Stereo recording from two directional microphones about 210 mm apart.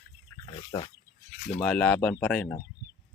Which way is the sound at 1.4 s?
35° left (ahead or behind).